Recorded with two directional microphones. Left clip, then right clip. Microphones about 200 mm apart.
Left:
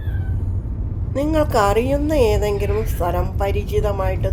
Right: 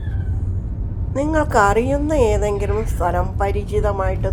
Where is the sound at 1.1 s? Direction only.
Centre (ahead or behind).